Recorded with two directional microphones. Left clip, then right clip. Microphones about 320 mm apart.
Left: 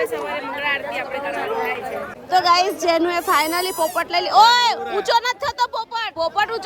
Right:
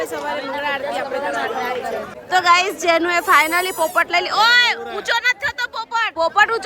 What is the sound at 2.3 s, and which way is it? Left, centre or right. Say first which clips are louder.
Speech: right 1 dB; centre.